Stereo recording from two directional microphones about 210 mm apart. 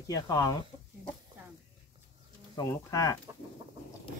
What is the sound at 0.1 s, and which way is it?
Speech, 15° left (ahead or behind).